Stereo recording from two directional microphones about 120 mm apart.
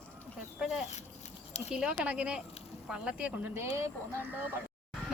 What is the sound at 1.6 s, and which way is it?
Speech, 5° right (ahead or behind).